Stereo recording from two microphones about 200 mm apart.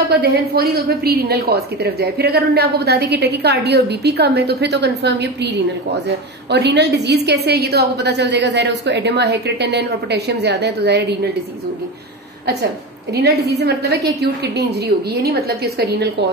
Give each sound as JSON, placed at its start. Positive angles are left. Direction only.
{"t": 0.1, "sound": "a woman's voice", "side_deg": -55}
{"t": 13.1, "sound": "a woman's voice", "side_deg": -55}